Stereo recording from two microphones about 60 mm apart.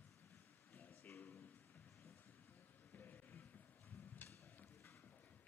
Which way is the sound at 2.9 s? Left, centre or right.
Left.